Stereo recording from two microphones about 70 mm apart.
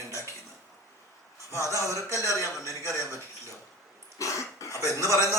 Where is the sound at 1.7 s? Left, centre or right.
Left.